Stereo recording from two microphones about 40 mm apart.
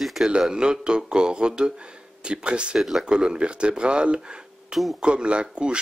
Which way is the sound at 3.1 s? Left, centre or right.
Right.